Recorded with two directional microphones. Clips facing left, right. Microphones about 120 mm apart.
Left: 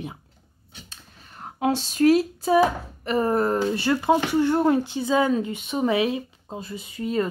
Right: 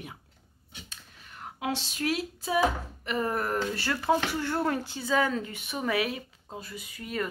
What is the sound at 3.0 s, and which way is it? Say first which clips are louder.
Speech: left 8 dB; 35° left (ahead or behind).